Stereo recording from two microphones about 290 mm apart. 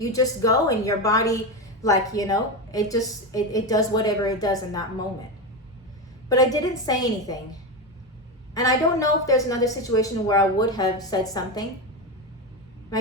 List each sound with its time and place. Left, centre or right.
0.0 s a woman's voice: centre
6.2 s a woman's voice: centre
8.5 s a woman's voice: centre